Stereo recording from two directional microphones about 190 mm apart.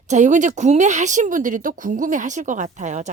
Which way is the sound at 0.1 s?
40° right (ahead or behind).